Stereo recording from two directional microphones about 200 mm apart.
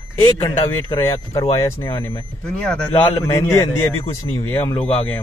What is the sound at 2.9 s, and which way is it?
A man's voice, 15° left (ahead or behind).